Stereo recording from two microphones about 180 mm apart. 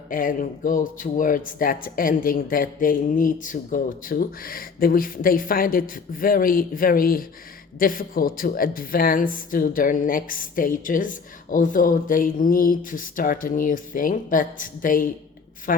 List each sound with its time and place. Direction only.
0.1 s a woman's voice: 50° left (ahead or behind)